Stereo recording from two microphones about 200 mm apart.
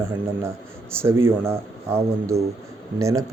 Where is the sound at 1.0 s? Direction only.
10° right (ahead or behind).